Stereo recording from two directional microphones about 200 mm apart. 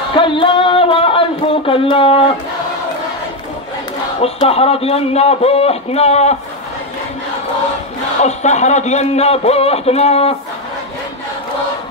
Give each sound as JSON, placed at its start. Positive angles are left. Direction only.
{"t": 0.1, "sound": "a sound", "side_deg": 25}
{"t": 4.2, "sound": "speech", "side_deg": 30}
{"t": 8.2, "sound": "speech", "side_deg": 35}